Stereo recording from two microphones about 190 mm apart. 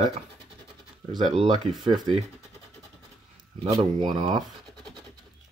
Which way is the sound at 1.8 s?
25° right (ahead or behind).